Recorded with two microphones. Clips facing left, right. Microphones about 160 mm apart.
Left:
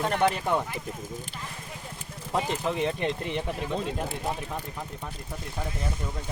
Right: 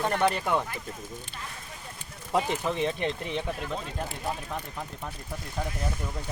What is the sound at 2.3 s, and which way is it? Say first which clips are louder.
Speech: right 1 dB; centre (ahead or behind).